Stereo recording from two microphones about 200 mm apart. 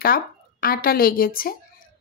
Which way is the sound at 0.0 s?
50° left (ahead or behind).